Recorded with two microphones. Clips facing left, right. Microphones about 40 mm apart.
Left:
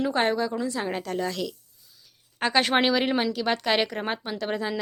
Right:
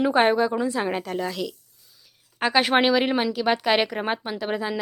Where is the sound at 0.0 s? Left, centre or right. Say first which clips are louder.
Right 5 dB; centre.